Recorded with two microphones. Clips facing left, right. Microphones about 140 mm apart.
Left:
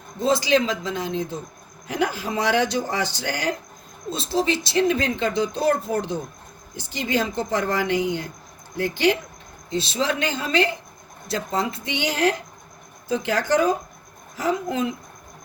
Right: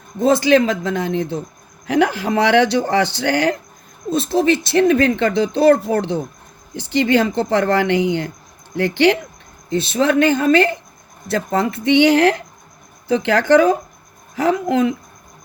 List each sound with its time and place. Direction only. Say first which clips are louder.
0.2 s speech: right 6 dB; 55° right (ahead or behind)
4.1 s speech: right 7 dB; 55° right (ahead or behind)
9.6 s speech: right 7 dB; 55° right (ahead or behind)